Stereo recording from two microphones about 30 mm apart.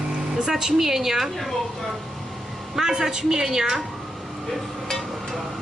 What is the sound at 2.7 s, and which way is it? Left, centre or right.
A woman's voice, centre.